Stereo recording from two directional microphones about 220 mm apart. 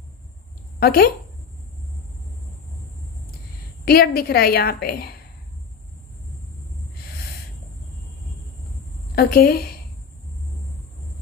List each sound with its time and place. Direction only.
0.7 s speech: 45° left (ahead or behind)
3.8 s a woman's voice: 45° left (ahead or behind)
9.1 s a woman's voice: 45° left (ahead or behind)